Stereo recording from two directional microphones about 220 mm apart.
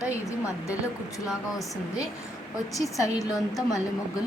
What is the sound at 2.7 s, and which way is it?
Speech, 15° left (ahead or behind).